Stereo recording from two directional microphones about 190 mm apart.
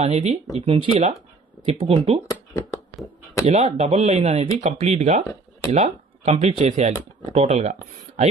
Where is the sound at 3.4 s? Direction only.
35° right (ahead or behind).